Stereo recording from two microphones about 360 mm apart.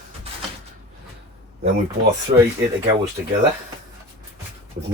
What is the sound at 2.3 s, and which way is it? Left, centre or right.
Speech, right.